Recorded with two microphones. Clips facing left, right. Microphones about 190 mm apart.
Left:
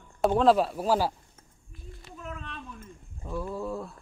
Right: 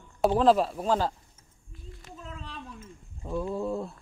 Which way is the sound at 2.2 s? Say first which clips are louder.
Left 2 dB; 30° right (ahead or behind).